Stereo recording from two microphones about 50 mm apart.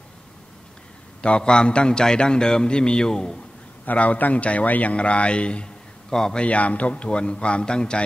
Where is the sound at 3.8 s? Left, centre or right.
Left; by 6.4 s centre.